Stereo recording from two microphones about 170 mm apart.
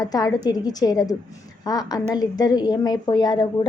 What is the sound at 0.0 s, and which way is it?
A woman's voice, 20° left (ahead or behind).